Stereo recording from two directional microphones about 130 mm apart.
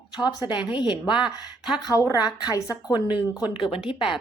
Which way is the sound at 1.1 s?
5° right (ahead or behind).